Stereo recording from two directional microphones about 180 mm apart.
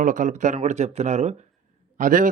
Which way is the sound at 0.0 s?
45° right (ahead or behind).